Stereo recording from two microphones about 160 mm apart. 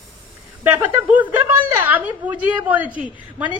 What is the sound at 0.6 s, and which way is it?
A woman's voice, 10° right (ahead or behind).